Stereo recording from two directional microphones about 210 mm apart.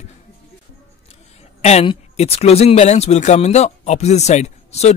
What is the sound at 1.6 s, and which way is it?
Speech, 30° left (ahead or behind).